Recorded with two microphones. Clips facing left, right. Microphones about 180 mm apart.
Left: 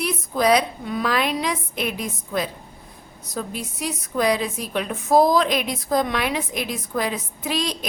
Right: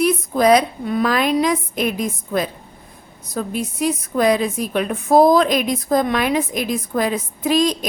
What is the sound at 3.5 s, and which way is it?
A woman's voice, 50° right (ahead or behind).